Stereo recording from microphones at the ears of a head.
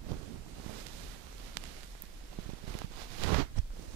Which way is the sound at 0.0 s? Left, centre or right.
Right.